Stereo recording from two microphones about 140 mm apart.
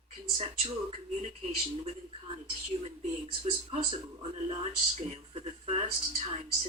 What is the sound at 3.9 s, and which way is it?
Speech, 45° right (ahead or behind).